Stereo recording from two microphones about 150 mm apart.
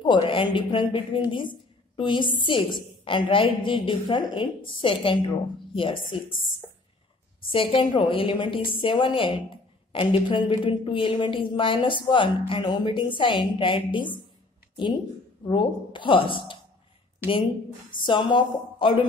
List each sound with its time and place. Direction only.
0.0 s a woman's voice: 35° left (ahead or behind)
7.5 s a woman's voice: 35° left (ahead or behind)
15.4 s a woman's voice: 30° left (ahead or behind)
18.0 s a woman's voice: 30° left (ahead or behind)